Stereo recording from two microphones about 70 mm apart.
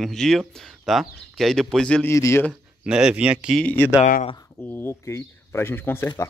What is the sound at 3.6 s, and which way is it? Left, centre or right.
Speech, left.